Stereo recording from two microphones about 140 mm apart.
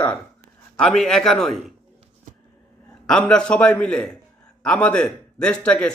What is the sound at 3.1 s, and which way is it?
A man's voice, 5° left (ahead or behind).